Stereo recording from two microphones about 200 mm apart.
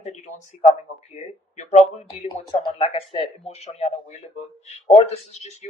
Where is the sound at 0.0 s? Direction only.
35° left (ahead or behind).